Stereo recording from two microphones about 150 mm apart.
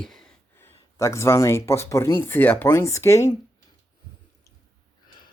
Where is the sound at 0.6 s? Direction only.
20° left (ahead or behind).